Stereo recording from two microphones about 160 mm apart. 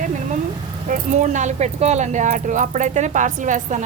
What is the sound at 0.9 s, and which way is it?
Speech, 50° right (ahead or behind).